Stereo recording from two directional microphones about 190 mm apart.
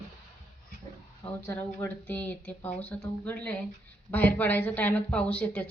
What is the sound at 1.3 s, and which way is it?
Speech, 10° left (ahead or behind).